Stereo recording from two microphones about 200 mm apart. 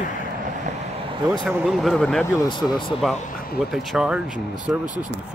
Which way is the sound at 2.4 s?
20° left (ahead or behind).